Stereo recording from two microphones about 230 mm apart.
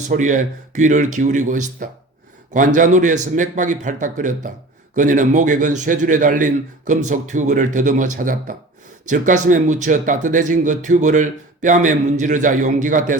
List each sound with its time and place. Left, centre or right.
0.1 s speech: right